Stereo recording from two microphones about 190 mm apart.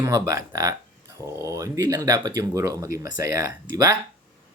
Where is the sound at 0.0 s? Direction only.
15° right (ahead or behind).